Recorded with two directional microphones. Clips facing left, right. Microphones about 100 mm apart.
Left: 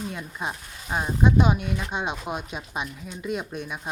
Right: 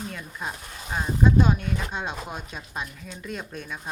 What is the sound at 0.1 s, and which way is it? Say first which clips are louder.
Speech: left 2 dB; 20° left (ahead or behind).